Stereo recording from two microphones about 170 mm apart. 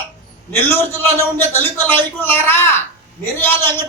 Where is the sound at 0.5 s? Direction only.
15° left (ahead or behind).